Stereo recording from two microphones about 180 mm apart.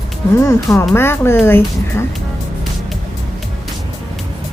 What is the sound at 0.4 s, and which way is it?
Speech, 15° left (ahead or behind).